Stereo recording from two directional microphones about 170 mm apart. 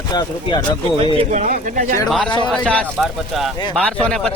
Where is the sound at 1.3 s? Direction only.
50° right (ahead or behind).